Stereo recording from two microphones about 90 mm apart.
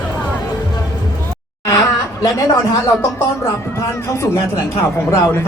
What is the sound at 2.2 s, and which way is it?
Speech, 45° left (ahead or behind).